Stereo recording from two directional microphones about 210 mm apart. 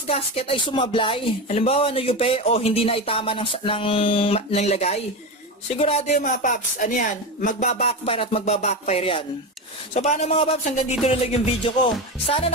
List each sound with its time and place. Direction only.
0.0 s speech: 30° left (ahead or behind)